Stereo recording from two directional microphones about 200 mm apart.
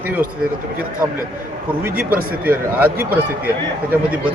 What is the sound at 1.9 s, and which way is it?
Speech, 45° right (ahead or behind).